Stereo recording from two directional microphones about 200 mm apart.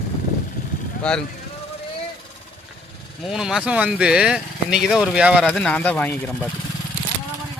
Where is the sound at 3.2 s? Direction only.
Centre (ahead or behind).